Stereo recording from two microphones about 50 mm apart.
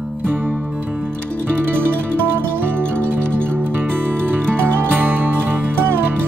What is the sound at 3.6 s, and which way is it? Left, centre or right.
Music, right.